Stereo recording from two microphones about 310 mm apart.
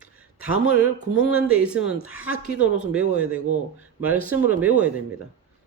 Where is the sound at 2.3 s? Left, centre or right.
Right.